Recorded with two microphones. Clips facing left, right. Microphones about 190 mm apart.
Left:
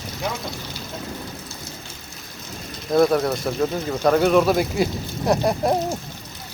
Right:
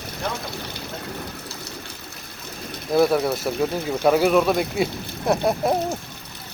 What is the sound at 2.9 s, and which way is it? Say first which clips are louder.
Speech: left 1 dB; 5° right (ahead or behind).